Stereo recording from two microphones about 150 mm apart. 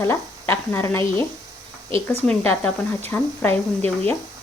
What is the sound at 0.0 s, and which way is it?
Speech, 15° left (ahead or behind).